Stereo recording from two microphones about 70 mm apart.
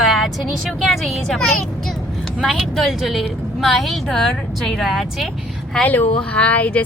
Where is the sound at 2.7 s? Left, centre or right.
Centre.